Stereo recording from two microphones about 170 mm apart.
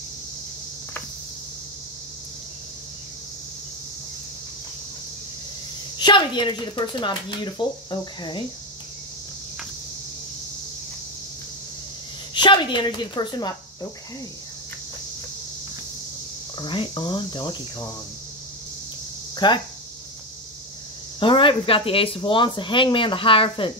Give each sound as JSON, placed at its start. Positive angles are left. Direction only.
{"t": 5.9, "sound": "speech", "side_deg": 25}
{"t": 12.4, "sound": "a woman's voice", "side_deg": 25}
{"t": 16.5, "sound": "speech", "side_deg": 30}
{"t": 19.3, "sound": "speech", "side_deg": 25}
{"t": 21.2, "sound": "speech", "side_deg": 30}